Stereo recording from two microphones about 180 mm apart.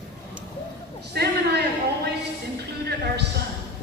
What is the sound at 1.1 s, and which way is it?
Speech, 65° right (ahead or behind).